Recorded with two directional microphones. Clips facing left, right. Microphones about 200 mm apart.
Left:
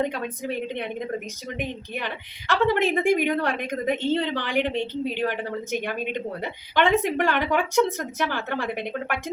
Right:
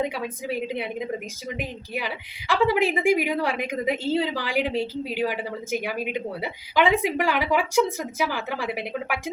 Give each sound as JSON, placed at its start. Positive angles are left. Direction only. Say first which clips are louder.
{"t": 0.0, "sound": "a woman's voice", "louder": "left 1 dB", "side_deg": -5}